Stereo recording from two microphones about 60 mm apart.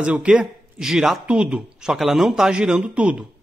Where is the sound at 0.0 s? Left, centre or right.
Centre.